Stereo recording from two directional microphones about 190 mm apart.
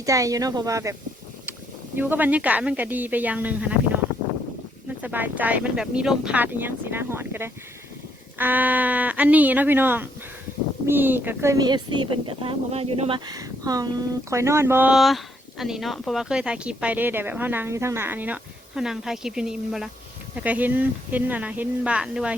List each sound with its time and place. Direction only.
0.0 s speech: 15° right (ahead or behind)
2.0 s speech: 10° right (ahead or behind)
5.0 s speech: 10° right (ahead or behind)